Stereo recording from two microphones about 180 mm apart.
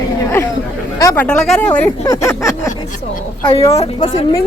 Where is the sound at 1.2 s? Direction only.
5° left (ahead or behind).